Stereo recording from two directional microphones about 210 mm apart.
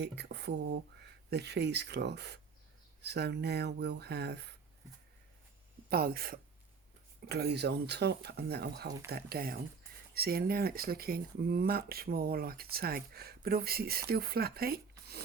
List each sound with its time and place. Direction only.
0.0 s speech: 55° right (ahead or behind)
5.9 s speech: 45° right (ahead or behind)